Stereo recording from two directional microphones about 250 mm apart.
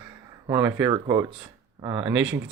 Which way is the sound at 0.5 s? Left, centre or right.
Centre.